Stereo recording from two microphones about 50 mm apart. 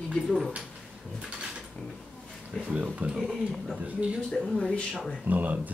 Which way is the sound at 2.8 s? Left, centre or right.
Right.